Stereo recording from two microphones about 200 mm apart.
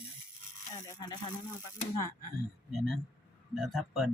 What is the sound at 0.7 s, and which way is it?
Speech, 20° left (ahead or behind).